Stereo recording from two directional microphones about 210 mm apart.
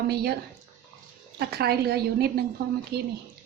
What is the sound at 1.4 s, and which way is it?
A woman's voice, 50° right (ahead or behind).